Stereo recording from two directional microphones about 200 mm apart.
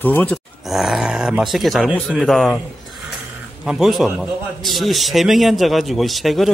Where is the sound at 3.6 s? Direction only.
Centre (ahead or behind).